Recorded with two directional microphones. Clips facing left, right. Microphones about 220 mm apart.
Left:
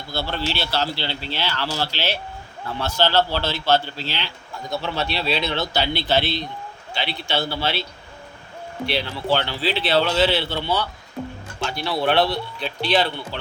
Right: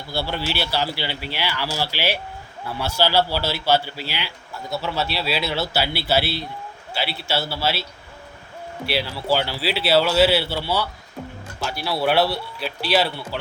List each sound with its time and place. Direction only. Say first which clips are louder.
0.1 s a man's voice: even; 10° right (ahead or behind)
8.9 s a man's voice: even; 5° right (ahead or behind)